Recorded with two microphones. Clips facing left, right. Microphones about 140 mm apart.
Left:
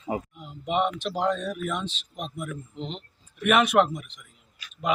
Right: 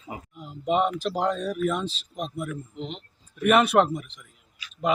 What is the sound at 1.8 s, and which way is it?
Speech, 35° right (ahead or behind).